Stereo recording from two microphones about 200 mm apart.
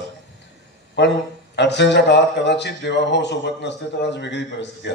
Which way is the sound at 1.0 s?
60° left (ahead or behind).